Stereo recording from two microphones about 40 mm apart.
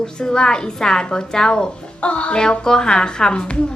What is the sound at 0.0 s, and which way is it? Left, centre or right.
A woman's voice, centre.